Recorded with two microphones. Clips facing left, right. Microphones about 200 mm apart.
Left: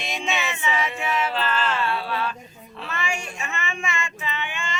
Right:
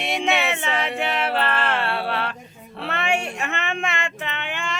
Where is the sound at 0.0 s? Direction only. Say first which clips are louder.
Right 5 dB; 60° right (ahead or behind).